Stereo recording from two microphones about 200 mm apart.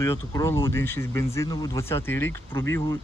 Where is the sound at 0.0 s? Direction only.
15° left (ahead or behind).